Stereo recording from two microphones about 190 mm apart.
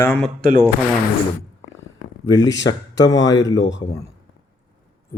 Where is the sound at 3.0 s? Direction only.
20° left (ahead or behind).